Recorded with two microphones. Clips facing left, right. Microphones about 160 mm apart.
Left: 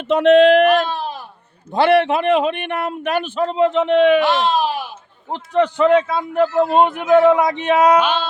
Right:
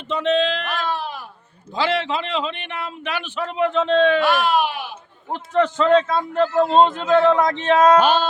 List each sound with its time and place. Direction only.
0.1 s a man's voice: 70° left (ahead or behind); by 3.4 s 45° left (ahead or behind)
3.4 s a man's voice: 30° left (ahead or behind)
5.3 s a man's voice: 15° left (ahead or behind)
8.0 s speech: 40° right (ahead or behind)